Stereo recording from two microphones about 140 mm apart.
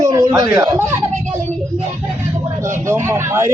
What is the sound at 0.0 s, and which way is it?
Speech, 25° right (ahead or behind).